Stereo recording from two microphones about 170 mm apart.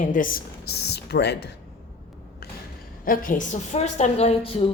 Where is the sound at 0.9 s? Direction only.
75° left (ahead or behind).